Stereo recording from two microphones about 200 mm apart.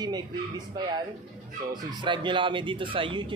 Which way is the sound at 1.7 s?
25° right (ahead or behind).